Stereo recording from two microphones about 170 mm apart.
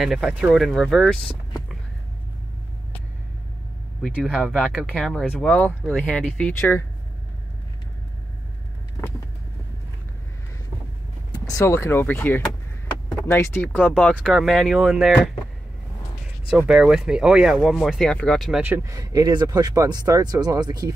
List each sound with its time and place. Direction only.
0.0 s speech: 5° right (ahead or behind)
4.0 s speech: centre (ahead or behind)
11.4 s speech: 15° left (ahead or behind); by 15.3 s centre (ahead or behind)
16.4 s speech: 5° right (ahead or behind)
18.6 s speech: 15° right (ahead or behind)